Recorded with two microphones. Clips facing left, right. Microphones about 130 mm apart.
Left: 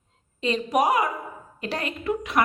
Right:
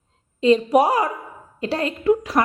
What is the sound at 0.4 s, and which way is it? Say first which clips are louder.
A woman's voice: right 7 dB; 25° right (ahead or behind).